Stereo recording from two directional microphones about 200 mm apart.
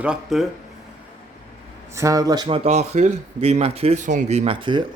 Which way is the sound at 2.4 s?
30° right (ahead or behind).